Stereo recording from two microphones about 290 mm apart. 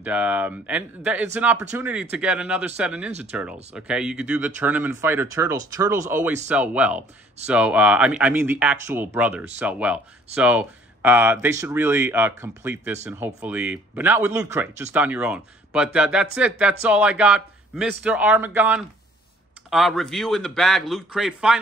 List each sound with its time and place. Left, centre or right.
0.0 s speech: centre